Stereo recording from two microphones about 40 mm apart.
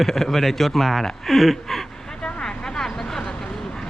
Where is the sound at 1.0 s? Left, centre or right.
Centre.